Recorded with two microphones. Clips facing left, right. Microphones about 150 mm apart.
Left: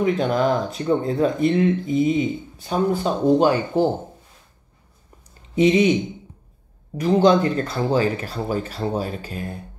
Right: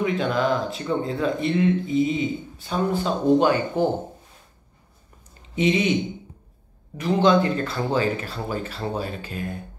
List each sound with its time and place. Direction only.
0.0 s speech: 45° left (ahead or behind)
5.6 s speech: 40° left (ahead or behind)
7.0 s speech: 40° left (ahead or behind)